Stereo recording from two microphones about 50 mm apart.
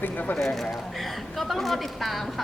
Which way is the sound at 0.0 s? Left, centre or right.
Left.